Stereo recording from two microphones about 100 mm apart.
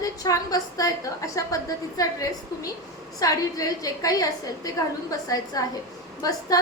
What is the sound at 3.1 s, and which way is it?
A woman's voice, 35° left (ahead or behind).